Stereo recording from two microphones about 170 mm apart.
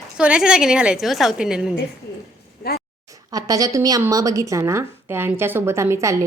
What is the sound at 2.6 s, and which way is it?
Speech, 65° left (ahead or behind).